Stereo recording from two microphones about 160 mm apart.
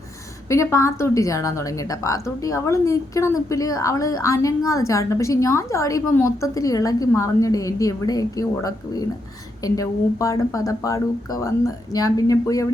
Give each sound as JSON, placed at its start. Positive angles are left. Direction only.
{"t": 0.4, "sound": "a woman's voice", "side_deg": 20}